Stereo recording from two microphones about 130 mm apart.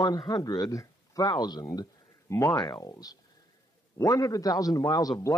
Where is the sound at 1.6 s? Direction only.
25° left (ahead or behind).